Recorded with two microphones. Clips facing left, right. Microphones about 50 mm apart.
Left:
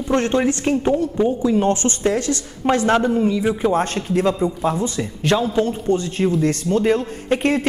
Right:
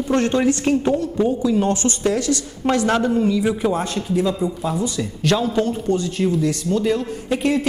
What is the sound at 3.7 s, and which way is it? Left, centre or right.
A man's voice, left.